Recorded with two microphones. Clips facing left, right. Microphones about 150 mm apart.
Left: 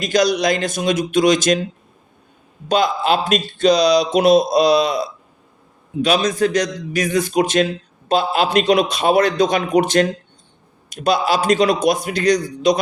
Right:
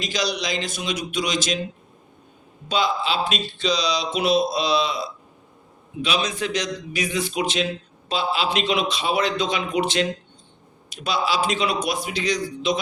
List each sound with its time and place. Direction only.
0.0 s a man's voice: 50° left (ahead or behind)
2.6 s a man's voice: 50° left (ahead or behind)